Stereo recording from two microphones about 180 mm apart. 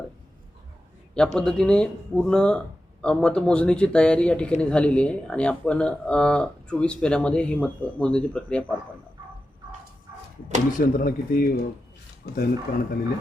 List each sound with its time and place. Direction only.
1.1 s speech: 5° left (ahead or behind)
10.8 s speech: 50° left (ahead or behind)